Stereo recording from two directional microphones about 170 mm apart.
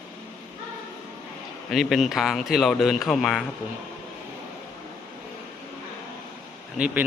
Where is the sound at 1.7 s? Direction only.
Centre (ahead or behind).